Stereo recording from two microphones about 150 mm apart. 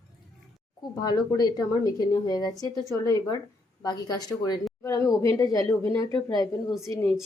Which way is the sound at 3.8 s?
25° left (ahead or behind).